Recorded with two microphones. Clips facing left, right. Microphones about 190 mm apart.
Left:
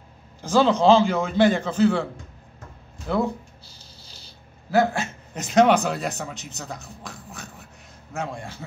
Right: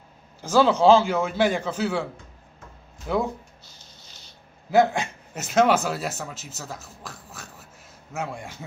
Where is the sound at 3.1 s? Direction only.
10° right (ahead or behind).